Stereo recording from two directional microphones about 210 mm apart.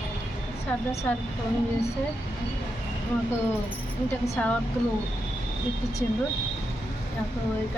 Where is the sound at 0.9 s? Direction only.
15° left (ahead or behind).